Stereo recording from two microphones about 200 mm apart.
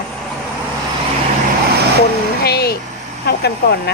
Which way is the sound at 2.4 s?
50° left (ahead or behind).